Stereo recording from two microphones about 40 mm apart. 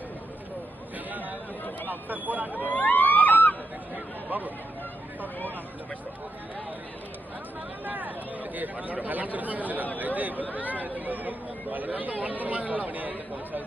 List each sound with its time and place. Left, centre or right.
1.9 s speech: right
2.6 s vehicle: left
3.9 s chatter: right
7.9 s speech: right